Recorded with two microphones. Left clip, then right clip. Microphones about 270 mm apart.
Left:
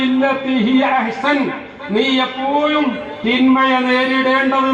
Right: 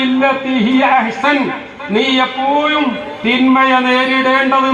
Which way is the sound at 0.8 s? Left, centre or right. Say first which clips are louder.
Right 6 dB; centre.